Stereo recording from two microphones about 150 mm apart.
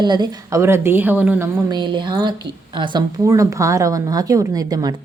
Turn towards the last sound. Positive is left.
turn(degrees=-25)  # may be behind; listen again after turning